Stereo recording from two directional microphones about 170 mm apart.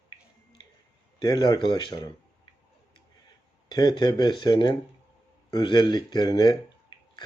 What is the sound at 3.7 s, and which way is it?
Speech, 25° left (ahead or behind).